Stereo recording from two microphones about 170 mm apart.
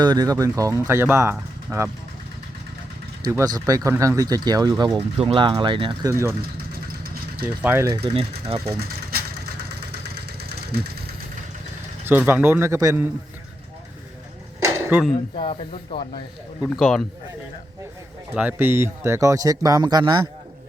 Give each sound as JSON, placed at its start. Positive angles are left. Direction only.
{"t": 0.0, "sound": "speech", "side_deg": -25}
{"t": 3.2, "sound": "speech", "side_deg": -20}
{"t": 6.1, "sound": "speech", "side_deg": -15}
{"t": 7.4, "sound": "speech", "side_deg": -10}
{"t": 8.0, "sound": "speech", "side_deg": -35}
{"t": 9.9, "sound": "vehicle", "side_deg": -70}
{"t": 12.0, "sound": "speech", "side_deg": -10}
{"t": 14.6, "sound": "a sound", "side_deg": -10}
{"t": 15.4, "sound": "speech", "side_deg": 30}
{"t": 16.6, "sound": "a man's voice", "side_deg": 0}
{"t": 18.3, "sound": "speech", "side_deg": -10}